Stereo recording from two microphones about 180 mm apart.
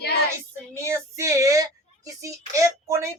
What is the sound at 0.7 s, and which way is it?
Child singing, 15° right (ahead or behind).